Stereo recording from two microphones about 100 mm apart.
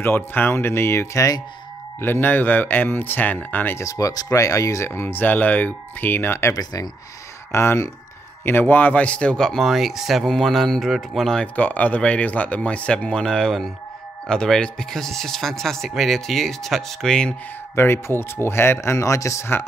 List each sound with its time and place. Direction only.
0.0 s speech: 20° left (ahead or behind)
2.0 s speech: 20° left (ahead or behind)
3.8 s speech: 35° left (ahead or behind)
6.5 s speech: 40° left (ahead or behind)
7.5 s a man's voice: 25° left (ahead or behind); by 17.4 s 5° left (ahead or behind)
17.7 s speech: 25° left (ahead or behind)